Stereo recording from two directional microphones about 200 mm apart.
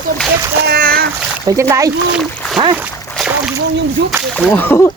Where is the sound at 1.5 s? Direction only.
15° right (ahead or behind).